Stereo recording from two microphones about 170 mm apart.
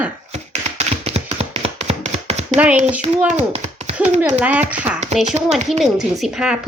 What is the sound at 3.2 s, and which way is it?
Speech, 40° right (ahead or behind).